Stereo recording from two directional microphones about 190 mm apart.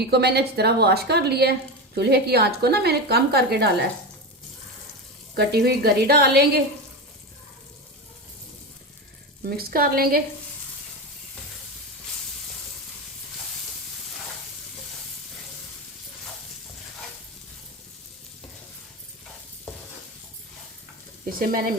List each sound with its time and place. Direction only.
0.0 s a woman's voice: 60° right (ahead or behind)
5.4 s a woman's voice: 60° right (ahead or behind)
9.5 s a woman's voice: 50° right (ahead or behind)
21.2 s a woman's voice: 50° right (ahead or behind)